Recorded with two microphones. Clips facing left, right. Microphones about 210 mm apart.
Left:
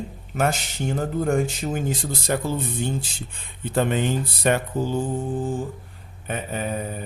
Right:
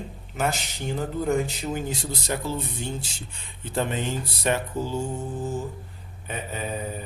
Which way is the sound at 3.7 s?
55° left (ahead or behind).